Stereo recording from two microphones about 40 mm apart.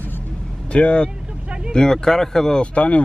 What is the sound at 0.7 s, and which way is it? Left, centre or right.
Speech, left.